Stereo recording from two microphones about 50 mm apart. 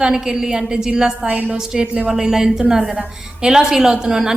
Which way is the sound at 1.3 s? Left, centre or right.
Right.